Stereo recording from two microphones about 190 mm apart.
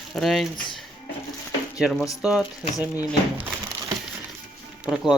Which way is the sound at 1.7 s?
5° right (ahead or behind).